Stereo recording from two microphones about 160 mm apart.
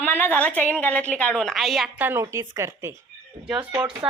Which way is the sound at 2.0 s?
15° right (ahead or behind).